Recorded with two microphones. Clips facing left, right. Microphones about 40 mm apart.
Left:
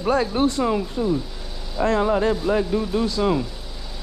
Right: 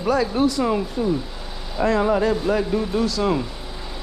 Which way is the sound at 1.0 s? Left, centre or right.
Centre.